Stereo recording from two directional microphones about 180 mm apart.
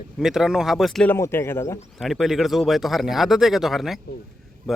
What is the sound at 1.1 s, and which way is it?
Speech, 15° left (ahead or behind).